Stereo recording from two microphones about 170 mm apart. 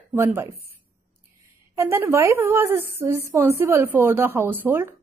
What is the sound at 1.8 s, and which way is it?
A woman's voice, 15° right (ahead or behind).